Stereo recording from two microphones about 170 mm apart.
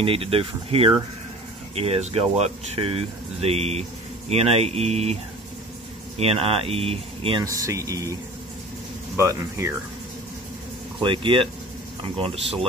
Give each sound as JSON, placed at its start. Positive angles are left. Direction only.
{"t": 0.0, "sound": "speech", "side_deg": -35}
{"t": 7.4, "sound": "speech", "side_deg": -20}
{"t": 11.0, "sound": "speech", "side_deg": -30}